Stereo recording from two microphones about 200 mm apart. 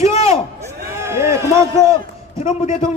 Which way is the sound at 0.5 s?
15° right (ahead or behind).